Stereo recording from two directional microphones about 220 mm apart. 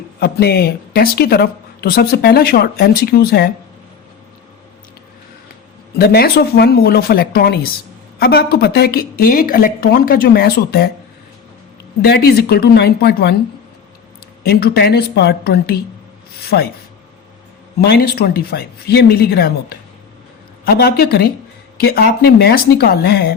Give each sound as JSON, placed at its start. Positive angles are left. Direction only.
{"t": 0.2, "sound": "speech", "side_deg": 45}
{"t": 6.0, "sound": "speech", "side_deg": 45}
{"t": 12.0, "sound": "speech", "side_deg": 45}
{"t": 14.4, "sound": "speech", "side_deg": 45}
{"t": 16.4, "sound": "a sound", "side_deg": 45}
{"t": 17.7, "sound": "speech", "side_deg": 45}